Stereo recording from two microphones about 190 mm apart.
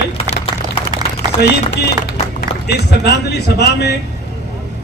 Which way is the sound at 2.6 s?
60° left (ahead or behind).